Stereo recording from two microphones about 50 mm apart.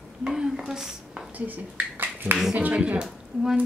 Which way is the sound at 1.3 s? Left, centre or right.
Right.